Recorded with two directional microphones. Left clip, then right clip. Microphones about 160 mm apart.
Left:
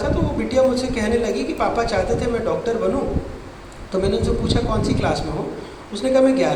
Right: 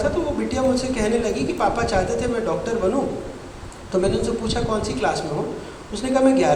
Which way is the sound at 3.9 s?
45° left (ahead or behind).